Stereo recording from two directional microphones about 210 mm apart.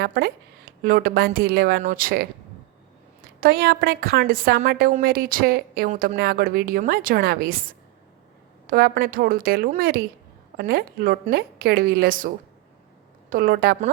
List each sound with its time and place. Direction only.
0.0 s a woman's voice: 50° right (ahead or behind)
3.4 s a woman's voice: 45° right (ahead or behind)
13.3 s a woman's voice: 45° right (ahead or behind)